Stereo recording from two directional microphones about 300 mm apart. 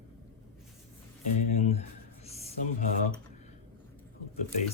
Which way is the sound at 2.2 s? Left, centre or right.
Left.